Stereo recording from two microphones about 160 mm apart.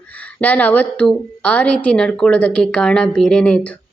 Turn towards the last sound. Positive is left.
turn(degrees=5)  # may be behind; listen again after turning